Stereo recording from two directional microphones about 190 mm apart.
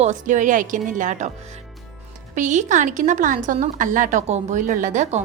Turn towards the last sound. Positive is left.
turn(degrees=-40)  # may be behind; listen again after turning